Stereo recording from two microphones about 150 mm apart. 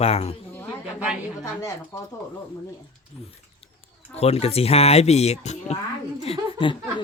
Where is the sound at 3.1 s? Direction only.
40° left (ahead or behind).